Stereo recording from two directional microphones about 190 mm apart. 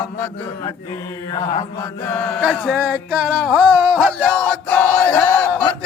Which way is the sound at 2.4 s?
Centre (ahead or behind).